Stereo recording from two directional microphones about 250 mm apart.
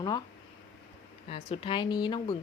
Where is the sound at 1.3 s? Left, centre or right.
Left.